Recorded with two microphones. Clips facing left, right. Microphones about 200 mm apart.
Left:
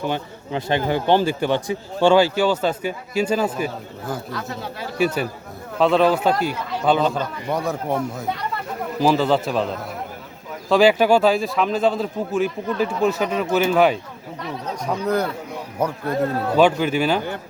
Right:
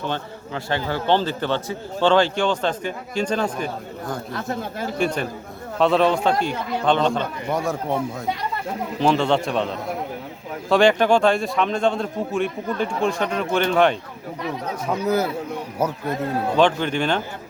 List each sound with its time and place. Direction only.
0.0 s a man's voice: 15° left (ahead or behind)
4.4 s speech: 50° right (ahead or behind)
4.9 s a man's voice: 5° left (ahead or behind)
14.8 s speech: 5° right (ahead or behind)
16.6 s a man's voice: 5° left (ahead or behind)